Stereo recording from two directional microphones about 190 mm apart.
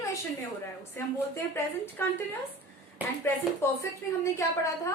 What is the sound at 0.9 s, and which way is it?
A woman's voice, 15° left (ahead or behind).